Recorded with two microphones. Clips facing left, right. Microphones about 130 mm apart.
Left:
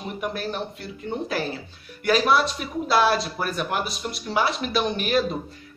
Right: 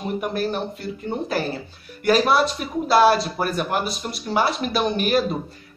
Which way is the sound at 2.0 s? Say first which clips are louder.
Right 2 dB; centre (ahead or behind).